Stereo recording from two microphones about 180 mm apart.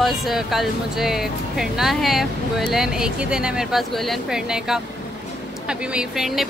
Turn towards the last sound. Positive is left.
turn(degrees=0)  # may be behind; listen again after turning